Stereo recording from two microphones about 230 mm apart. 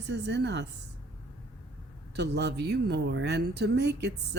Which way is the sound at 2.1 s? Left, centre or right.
Right.